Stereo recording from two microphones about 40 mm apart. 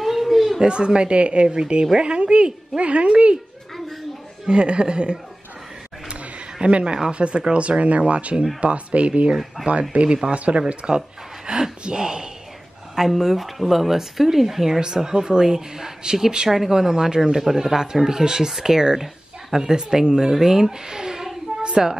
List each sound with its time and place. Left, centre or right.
0.0 s a sound: centre
0.6 s speech: right
4.5 s speech: right
6.6 s speech: right
11.0 s a sound: centre
11.8 s speech: centre
16.4 s a woman's voice: centre; by 21.9 s right